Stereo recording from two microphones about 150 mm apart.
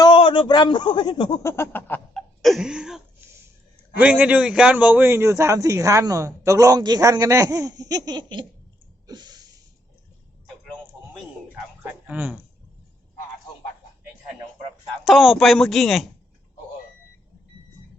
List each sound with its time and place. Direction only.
0.0 s speech: 30° left (ahead or behind); by 2.0 s 15° left (ahead or behind)
2.1 s cough: centre (ahead or behind)
3.9 s a man's voice: 10° right (ahead or behind); by 8.4 s 30° right (ahead or behind)
9.0 s a sound: 25° right (ahead or behind)
12.0 s speech: 10° right (ahead or behind)
15.0 s a man's voice: centre (ahead or behind)